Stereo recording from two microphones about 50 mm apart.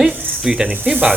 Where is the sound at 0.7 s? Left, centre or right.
Right.